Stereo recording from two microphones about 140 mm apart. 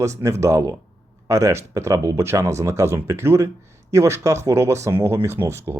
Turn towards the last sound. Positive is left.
turn(degrees=-20)  # may be behind; listen again after turning